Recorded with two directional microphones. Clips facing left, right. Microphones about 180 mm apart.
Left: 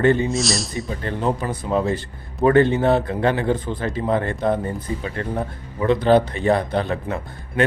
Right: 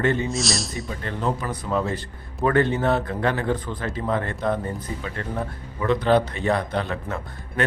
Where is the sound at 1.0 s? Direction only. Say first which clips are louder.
Left 3 dB; 30° left (ahead or behind).